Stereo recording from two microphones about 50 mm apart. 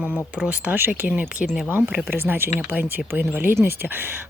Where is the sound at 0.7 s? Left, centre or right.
Right.